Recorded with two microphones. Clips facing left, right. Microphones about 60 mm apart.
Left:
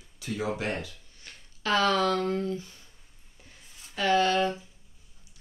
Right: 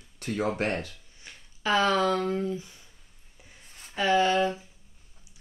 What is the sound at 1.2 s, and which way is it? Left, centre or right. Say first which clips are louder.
Speech: right 2 dB; centre.